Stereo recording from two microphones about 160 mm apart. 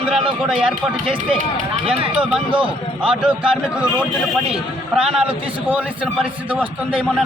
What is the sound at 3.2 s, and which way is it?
A man's voice, 5° right (ahead or behind).